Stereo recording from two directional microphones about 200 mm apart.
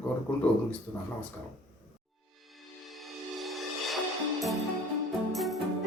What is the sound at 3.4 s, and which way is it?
Music, centre (ahead or behind).